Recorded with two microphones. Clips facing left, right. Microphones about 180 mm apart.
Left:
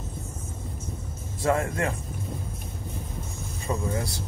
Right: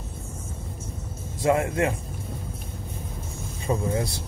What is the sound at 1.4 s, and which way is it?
Speech, 20° right (ahead or behind).